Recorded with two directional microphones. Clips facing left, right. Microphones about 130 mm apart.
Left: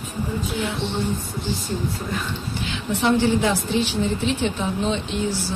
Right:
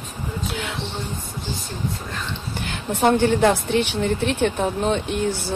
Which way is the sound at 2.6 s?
50° right (ahead or behind).